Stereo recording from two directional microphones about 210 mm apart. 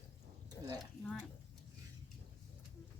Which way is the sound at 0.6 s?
10° left (ahead or behind).